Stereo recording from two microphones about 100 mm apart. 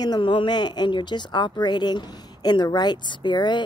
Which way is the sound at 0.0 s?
50° left (ahead or behind).